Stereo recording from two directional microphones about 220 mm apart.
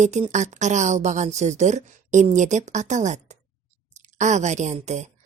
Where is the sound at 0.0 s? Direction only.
30° right (ahead or behind).